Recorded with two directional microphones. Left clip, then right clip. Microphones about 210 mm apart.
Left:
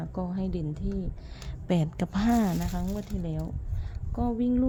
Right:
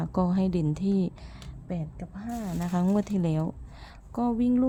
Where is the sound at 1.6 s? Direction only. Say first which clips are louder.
Left 9 dB; 20° left (ahead or behind).